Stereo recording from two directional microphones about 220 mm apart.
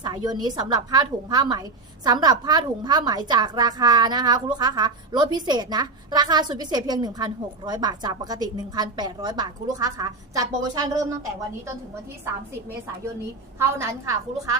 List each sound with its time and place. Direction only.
0.0 s a woman's voice: 20° right (ahead or behind)
13.6 s a woman's voice: 10° right (ahead or behind)